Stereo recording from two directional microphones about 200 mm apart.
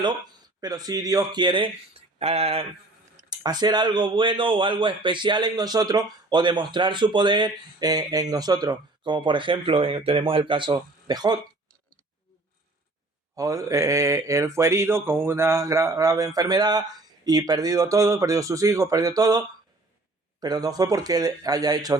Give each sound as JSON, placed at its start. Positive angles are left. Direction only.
{"t": 0.6, "sound": "speech", "side_deg": -20}
{"t": 13.3, "sound": "mantra", "side_deg": -15}
{"t": 20.4, "sound": "speech", "side_deg": -20}